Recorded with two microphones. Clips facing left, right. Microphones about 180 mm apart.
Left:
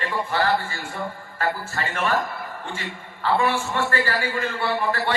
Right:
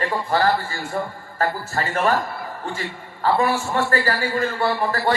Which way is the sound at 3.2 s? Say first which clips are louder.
Right 2 dB; 40° right (ahead or behind).